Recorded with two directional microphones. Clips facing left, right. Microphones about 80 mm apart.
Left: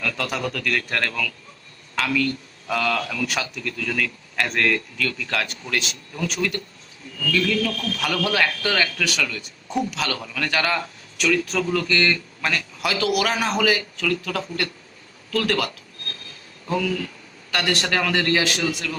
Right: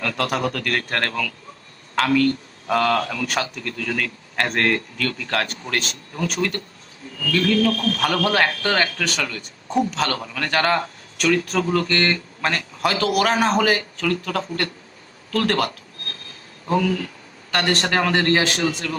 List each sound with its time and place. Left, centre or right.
0.0 s a man's voice: right
15.3 s a sound: right
16.6 s a man's voice: right